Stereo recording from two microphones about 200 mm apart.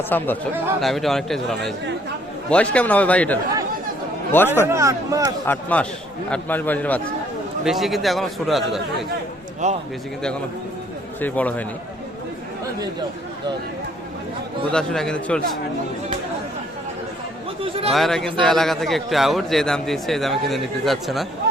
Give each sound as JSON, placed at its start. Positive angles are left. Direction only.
{"t": 0.1, "sound": "a man's voice", "side_deg": 10}
{"t": 4.7, "sound": "speech", "side_deg": -15}
{"t": 5.5, "sound": "a man's voice", "side_deg": 5}
{"t": 9.6, "sound": "speech", "side_deg": -35}
{"t": 11.2, "sound": "a man's voice", "side_deg": 10}
{"t": 14.7, "sound": "a man's voice", "side_deg": 5}
{"t": 17.6, "sound": "a sound", "side_deg": -30}
{"t": 17.9, "sound": "a man's voice", "side_deg": 0}